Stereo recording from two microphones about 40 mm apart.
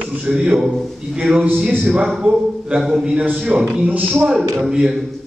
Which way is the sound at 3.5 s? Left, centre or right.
Right.